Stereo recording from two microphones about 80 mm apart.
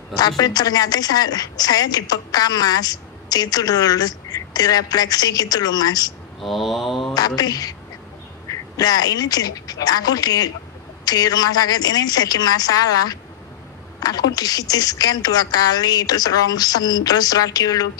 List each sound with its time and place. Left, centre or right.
0.4 s a woman's voice: left
6.4 s mantra: centre
7.2 s a woman's voice: left